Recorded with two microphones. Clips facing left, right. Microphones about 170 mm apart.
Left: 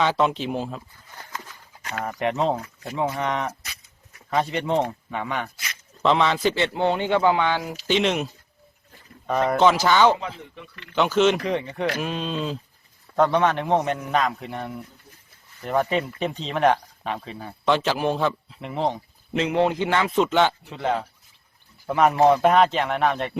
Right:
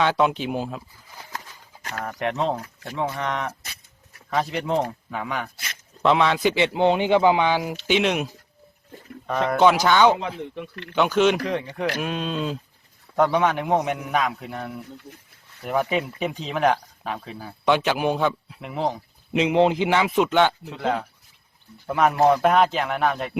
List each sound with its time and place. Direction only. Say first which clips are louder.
0.0 s speech: right 1 dB; centre (ahead or behind)
9.5 s speech: right 1 dB; centre (ahead or behind)
10.5 s speech: right 8 dB; 60° right (ahead or behind)
10.9 s speech: even; centre (ahead or behind)
19.3 s speech: right 3 dB; 15° right (ahead or behind); by 23.3 s centre (ahead or behind)